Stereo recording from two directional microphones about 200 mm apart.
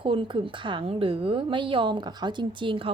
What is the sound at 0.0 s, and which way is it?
Speech, 25° right (ahead or behind).